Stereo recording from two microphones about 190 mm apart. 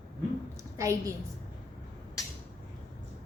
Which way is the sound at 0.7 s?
15° right (ahead or behind).